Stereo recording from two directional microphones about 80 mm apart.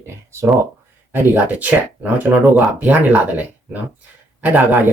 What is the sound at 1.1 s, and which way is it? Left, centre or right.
Speech, right.